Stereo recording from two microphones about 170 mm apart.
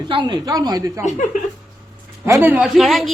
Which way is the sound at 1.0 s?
45° left (ahead or behind).